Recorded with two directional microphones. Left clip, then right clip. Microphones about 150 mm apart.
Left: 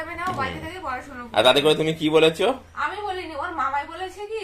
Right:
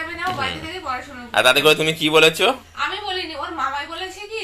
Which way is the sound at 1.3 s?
15° left (ahead or behind).